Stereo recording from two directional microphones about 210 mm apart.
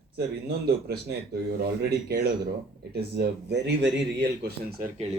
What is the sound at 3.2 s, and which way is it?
Speech, 55° right (ahead or behind).